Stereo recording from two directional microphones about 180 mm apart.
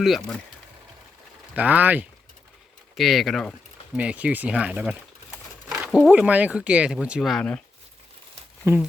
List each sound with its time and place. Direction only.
0.0 s speech: centre (ahead or behind)
1.5 s speech: 10° right (ahead or behind)
5.6 s a sound: 15° right (ahead or behind)
5.9 s speech: 5° right (ahead or behind)
8.6 s speech: 15° right (ahead or behind)